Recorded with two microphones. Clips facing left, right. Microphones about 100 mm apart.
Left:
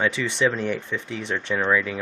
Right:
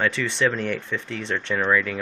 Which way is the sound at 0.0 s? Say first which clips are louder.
Even; 15° left (ahead or behind).